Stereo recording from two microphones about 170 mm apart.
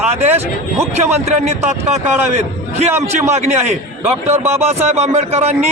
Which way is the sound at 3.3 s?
40° right (ahead or behind).